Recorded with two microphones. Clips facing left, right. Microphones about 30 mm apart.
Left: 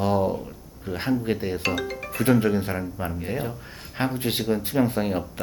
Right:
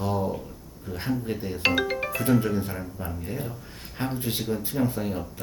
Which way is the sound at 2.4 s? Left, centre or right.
Left.